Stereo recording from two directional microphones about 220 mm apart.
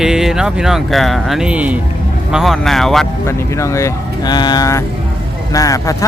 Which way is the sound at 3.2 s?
15° left (ahead or behind).